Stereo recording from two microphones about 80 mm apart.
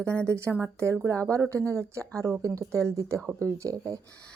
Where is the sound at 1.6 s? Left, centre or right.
Left.